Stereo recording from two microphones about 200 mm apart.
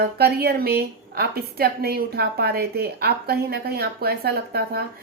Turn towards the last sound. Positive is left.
turn(degrees=-50)  # may be behind; listen again after turning